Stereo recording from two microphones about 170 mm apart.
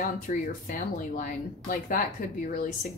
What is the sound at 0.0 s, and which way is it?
Speech, 50° left (ahead or behind).